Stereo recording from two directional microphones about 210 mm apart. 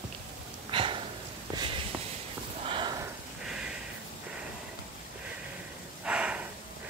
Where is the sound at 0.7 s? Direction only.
25° right (ahead or behind).